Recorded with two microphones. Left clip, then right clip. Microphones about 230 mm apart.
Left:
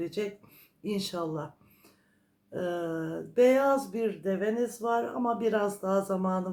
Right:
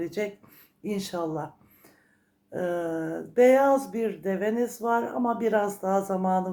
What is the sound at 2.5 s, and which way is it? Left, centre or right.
Speech, centre.